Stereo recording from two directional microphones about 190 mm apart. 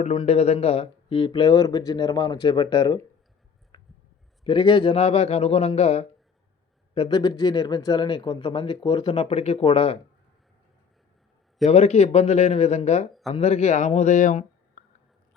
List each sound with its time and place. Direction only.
0.0 s speech: 30° left (ahead or behind)
3.7 s a sound: 20° left (ahead or behind)
4.4 s a man's voice: 25° left (ahead or behind)
11.6 s a man's voice: 35° left (ahead or behind)